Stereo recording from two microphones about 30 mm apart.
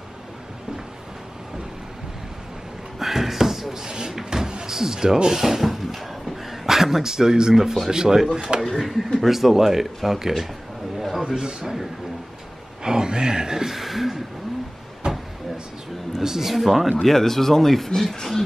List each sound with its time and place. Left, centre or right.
3.0 s a sound: centre
4.7 s speech: centre
8.7 s speech: centre
11.0 s a sound: centre
11.2 s speech: right
12.8 s speech: right
13.7 s speech: centre
15.0 s vehicle: right
16.2 s speech: centre
17.0 s speech: centre